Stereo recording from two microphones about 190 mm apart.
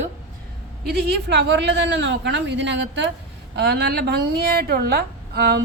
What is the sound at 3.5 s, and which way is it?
A woman's voice, 60° right (ahead or behind).